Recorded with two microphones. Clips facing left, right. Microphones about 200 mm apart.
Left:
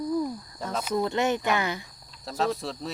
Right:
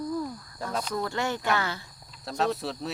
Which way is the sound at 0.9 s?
20° left (ahead or behind).